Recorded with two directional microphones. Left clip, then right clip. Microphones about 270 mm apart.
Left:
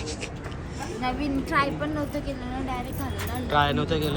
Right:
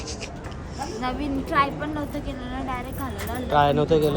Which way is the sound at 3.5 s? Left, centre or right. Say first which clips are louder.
Right 5 dB; centre.